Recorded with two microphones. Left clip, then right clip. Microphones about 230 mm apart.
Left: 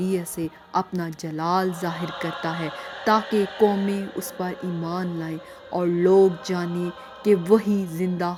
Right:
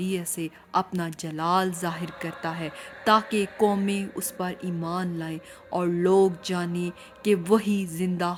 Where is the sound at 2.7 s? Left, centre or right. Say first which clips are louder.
Left 6 dB; left.